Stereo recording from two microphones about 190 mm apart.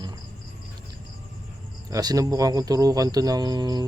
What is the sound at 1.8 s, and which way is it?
Speech, 20° right (ahead or behind).